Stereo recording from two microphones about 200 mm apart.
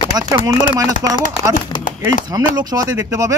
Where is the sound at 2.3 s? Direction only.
20° right (ahead or behind).